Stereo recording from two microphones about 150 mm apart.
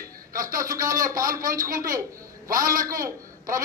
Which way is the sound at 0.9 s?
65° right (ahead or behind).